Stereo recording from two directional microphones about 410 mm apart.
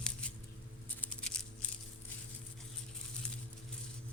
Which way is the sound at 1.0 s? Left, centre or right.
Centre.